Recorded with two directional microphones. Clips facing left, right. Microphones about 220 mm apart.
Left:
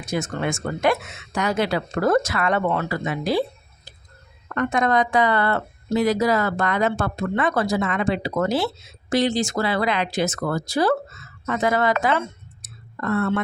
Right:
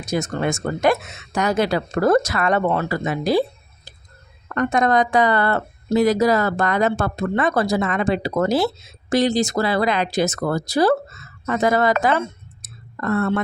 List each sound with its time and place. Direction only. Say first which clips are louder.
0.0 s speech: right 3 dB; 40° right (ahead or behind)
4.5 s speech: right 2 dB; 40° right (ahead or behind)